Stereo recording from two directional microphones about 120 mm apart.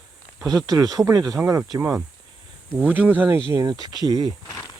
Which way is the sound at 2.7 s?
15° right (ahead or behind).